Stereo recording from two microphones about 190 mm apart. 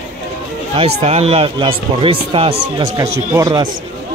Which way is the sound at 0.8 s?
30° right (ahead or behind).